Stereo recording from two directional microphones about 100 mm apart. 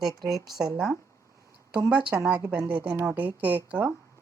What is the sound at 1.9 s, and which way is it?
A woman's voice, 10° right (ahead or behind).